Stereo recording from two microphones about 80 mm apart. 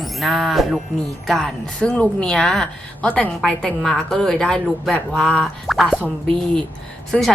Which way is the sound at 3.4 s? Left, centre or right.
Centre.